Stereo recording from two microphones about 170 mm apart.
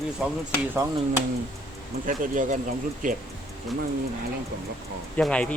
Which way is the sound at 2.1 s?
50° right (ahead or behind).